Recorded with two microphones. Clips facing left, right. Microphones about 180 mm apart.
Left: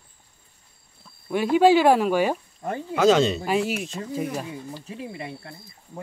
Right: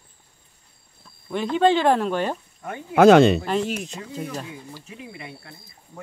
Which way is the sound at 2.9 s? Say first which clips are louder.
Right 6 dB; 60° right (ahead or behind).